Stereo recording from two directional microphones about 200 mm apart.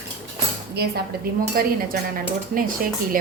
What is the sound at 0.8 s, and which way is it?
A woman's voice, 50° right (ahead or behind).